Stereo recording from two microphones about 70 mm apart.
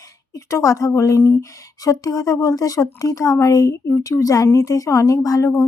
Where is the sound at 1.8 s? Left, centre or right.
Left.